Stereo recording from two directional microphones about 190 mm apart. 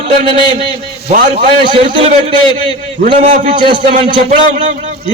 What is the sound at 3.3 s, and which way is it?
Speech, 45° right (ahead or behind).